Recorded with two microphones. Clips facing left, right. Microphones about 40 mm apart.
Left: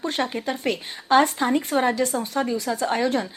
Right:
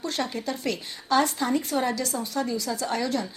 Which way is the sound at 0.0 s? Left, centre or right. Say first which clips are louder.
Left 4 dB; left.